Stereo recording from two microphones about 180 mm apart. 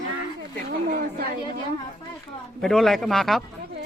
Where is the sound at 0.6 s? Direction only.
55° right (ahead or behind).